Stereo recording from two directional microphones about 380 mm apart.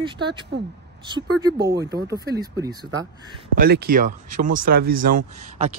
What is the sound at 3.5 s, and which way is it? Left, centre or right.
Speech, right.